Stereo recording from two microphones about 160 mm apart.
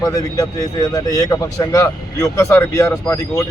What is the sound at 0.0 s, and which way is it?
Speech, 25° left (ahead or behind).